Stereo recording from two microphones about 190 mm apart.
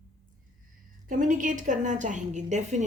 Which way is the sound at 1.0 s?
40° right (ahead or behind).